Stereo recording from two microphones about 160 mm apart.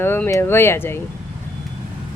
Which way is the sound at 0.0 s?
15° left (ahead or behind).